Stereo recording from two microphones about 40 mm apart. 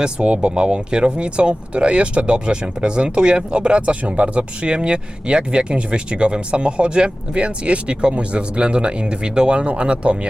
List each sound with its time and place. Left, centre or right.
0.0 s speech: right